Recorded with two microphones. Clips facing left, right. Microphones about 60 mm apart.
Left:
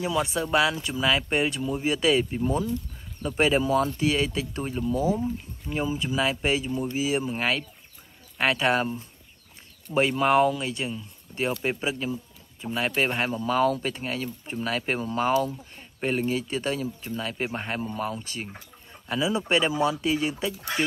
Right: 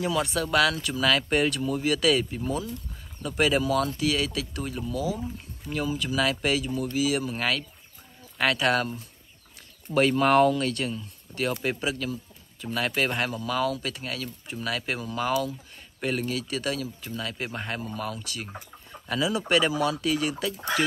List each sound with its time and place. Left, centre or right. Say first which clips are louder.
0.0 s speech: even; centre
9.9 s speech: right 1 dB; centre